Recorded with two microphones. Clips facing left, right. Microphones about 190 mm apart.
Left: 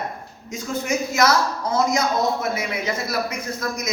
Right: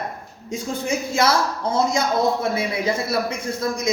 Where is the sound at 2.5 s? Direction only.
30° right (ahead or behind).